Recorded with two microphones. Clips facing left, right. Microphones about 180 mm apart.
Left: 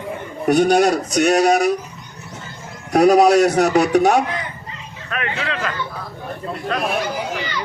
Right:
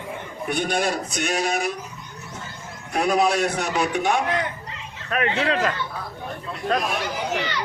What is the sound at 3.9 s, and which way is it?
Speech, 40° left (ahead or behind).